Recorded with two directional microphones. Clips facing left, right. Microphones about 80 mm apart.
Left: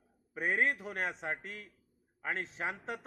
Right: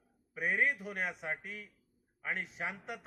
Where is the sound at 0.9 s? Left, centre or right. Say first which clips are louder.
Left 1 dB; left.